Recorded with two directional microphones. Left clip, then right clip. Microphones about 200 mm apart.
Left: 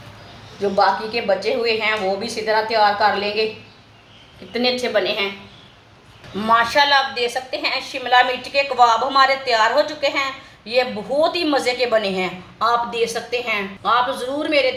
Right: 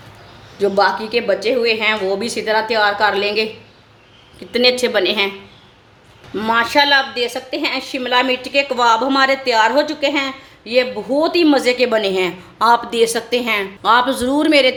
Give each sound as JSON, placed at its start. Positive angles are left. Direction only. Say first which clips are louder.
{"t": 0.6, "sound": "a woman's voice", "louder": "right 2 dB", "side_deg": -50}
{"t": 4.5, "sound": "a woman's voice", "louder": "right 5 dB", "side_deg": -50}
{"t": 6.4, "sound": "a woman's voice", "louder": "right 1 dB", "side_deg": -50}